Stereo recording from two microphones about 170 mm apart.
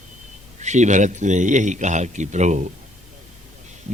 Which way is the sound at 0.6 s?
45° right (ahead or behind).